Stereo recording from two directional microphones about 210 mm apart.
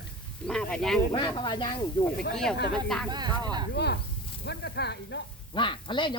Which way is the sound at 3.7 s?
50° left (ahead or behind).